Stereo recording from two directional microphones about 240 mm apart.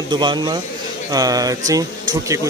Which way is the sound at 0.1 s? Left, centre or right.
Centre.